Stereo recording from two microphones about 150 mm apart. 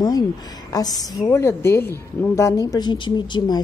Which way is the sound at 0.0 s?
25° left (ahead or behind).